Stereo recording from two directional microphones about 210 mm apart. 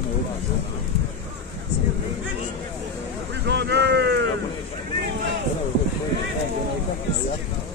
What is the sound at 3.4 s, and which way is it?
Vehicle, 55° right (ahead or behind).